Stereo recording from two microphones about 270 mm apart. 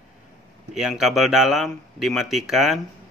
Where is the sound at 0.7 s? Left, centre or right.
Centre.